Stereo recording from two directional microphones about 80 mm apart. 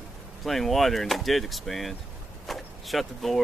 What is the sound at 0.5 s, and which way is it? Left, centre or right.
Speech, centre.